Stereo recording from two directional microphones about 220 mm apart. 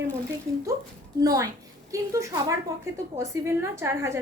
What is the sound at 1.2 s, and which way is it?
A woman's voice, 15° right (ahead or behind).